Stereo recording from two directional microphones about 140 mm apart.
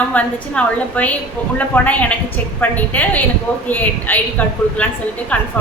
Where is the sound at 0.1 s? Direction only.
10° left (ahead or behind).